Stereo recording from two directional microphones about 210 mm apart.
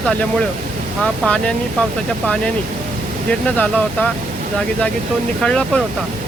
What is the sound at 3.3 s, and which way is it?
Speech, 5° left (ahead or behind).